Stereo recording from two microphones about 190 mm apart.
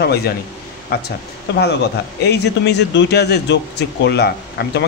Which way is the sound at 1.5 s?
60° left (ahead or behind).